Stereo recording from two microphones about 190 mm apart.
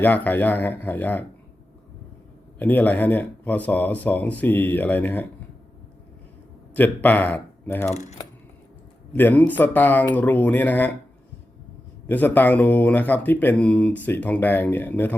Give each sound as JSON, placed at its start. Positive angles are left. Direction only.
{"t": 0.0, "sound": "speech", "side_deg": 10}
{"t": 2.6, "sound": "speech", "side_deg": 10}
{"t": 6.7, "sound": "speech", "side_deg": 10}
{"t": 9.1, "sound": "speech", "side_deg": 10}
{"t": 12.0, "sound": "speech", "side_deg": 10}